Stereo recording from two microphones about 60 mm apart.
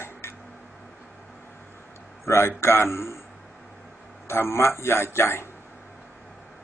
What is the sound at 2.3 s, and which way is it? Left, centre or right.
Speech, left.